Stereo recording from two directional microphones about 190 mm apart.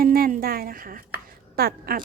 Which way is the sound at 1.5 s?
55° right (ahead or behind).